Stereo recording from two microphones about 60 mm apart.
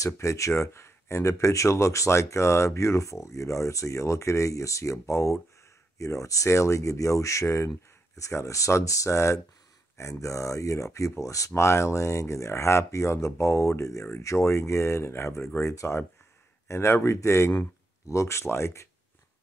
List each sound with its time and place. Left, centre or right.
0.0 s speech: left
7.4 s speech: left